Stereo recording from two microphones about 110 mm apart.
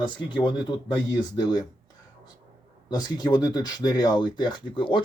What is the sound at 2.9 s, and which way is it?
Speech, 40° left (ahead or behind).